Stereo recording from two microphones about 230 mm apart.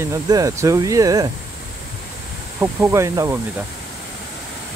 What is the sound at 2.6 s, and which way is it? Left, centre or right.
Speech, centre.